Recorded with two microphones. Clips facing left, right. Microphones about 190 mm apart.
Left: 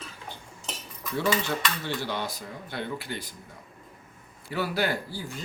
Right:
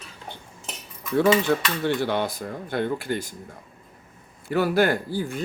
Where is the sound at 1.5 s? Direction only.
55° right (ahead or behind).